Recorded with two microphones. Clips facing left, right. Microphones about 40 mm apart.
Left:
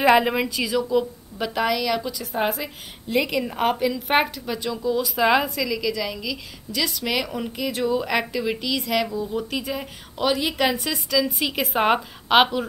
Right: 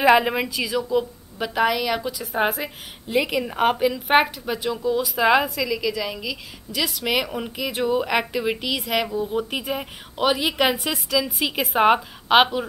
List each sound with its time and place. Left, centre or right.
0.0 s a woman's voice: centre
9.1 s speech: right
9.4 s a woman's voice: centre